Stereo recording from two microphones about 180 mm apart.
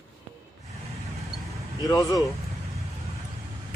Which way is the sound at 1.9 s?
20° left (ahead or behind).